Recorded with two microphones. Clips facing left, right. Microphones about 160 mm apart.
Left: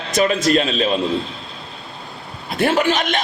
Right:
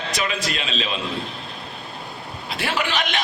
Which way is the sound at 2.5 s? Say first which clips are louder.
Left 8 dB; 50° left (ahead or behind).